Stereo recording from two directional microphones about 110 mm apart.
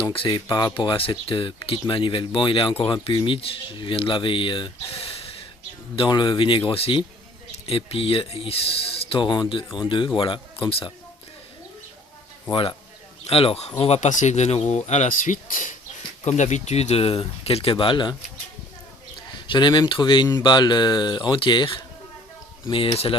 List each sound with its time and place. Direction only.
0.0 s speech: 50° left (ahead or behind)
6.0 s speech: 45° left (ahead or behind)
6.7 s speech: 60° left (ahead or behind)
9.0 s a sound: 60° left (ahead or behind)
9.2 s speech: 45° left (ahead or behind)
12.5 s speech: 50° left (ahead or behind)
13.2 s speech: 60° left (ahead or behind); by 15.1 s 90° left
16.2 s speech: 90° left; by 18.2 s 45° left (ahead or behind)
19.5 s speech: 45° left (ahead or behind)